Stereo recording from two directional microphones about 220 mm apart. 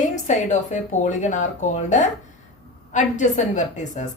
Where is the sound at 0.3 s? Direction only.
35° left (ahead or behind).